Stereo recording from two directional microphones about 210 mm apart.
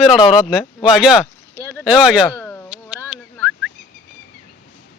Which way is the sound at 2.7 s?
5° right (ahead or behind).